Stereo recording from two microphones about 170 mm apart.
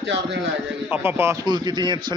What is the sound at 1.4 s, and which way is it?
Speech, 25° right (ahead or behind).